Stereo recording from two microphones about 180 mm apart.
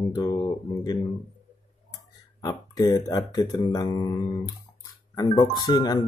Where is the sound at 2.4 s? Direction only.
20° left (ahead or behind).